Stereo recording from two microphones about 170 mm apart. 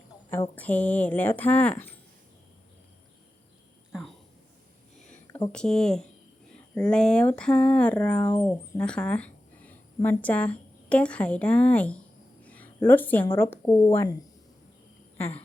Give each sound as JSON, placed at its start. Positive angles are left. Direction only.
{"t": 0.3, "sound": "speech", "side_deg": 10}
{"t": 5.5, "sound": "speech", "side_deg": 5}